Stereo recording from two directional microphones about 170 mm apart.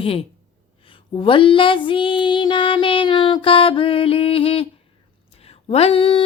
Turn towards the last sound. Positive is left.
turn(degrees=35)  # may be behind; listen again after turning